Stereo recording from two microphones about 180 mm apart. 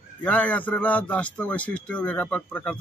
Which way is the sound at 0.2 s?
5° left (ahead or behind).